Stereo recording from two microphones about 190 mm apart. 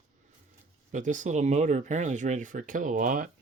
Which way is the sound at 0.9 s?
40° right (ahead or behind).